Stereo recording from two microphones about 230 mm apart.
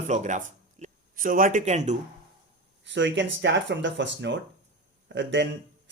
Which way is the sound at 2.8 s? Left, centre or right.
Right.